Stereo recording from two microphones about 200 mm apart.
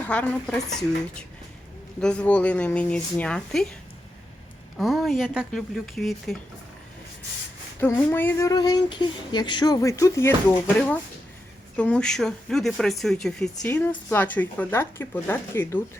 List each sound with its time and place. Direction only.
0.1 s speech: 5° left (ahead or behind)
4.8 s speech: centre (ahead or behind)
7.8 s speech: 10° left (ahead or behind)
11.8 s speech: 5° left (ahead or behind)